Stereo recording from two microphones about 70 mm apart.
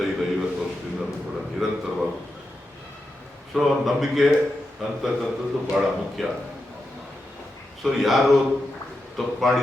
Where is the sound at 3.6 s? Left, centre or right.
Centre.